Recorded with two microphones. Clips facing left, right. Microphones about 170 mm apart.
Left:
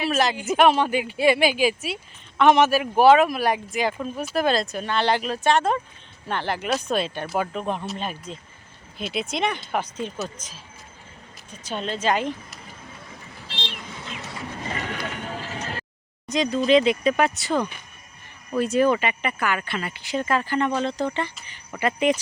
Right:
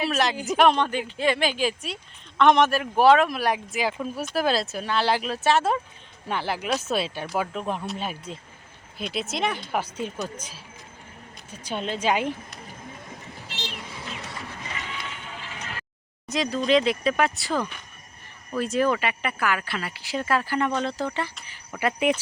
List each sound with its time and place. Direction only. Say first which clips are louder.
0.0 s speech: left 2 dB; centre (ahead or behind)
13.5 s a sound: left 1 dB; 30° left (ahead or behind)
14.6 s vehicle: left 9 dB; 45° left (ahead or behind)
16.3 s speech: left 3 dB; centre (ahead or behind)